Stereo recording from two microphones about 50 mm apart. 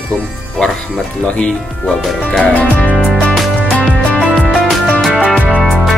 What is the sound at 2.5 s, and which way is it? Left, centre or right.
Music, left.